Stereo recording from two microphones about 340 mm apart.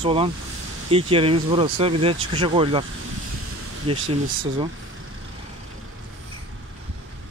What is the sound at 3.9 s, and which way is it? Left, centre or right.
Speech, centre.